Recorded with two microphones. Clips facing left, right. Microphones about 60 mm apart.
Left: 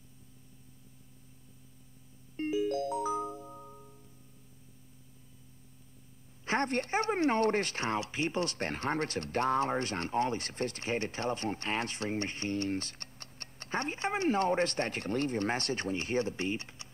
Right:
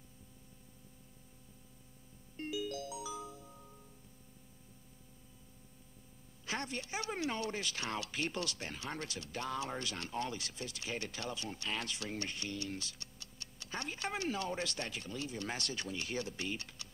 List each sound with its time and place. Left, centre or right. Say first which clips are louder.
2.3 s music: left 9 dB; left
6.4 s speech: left 10 dB; left
8.5 s speech: left 10 dB; left